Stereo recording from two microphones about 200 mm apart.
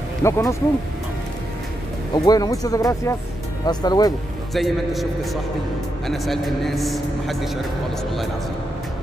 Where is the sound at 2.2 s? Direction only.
20° left (ahead or behind).